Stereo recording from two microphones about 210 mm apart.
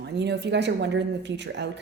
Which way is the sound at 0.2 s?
55° right (ahead or behind).